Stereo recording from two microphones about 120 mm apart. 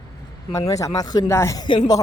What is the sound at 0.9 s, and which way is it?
Speech, 35° left (ahead or behind).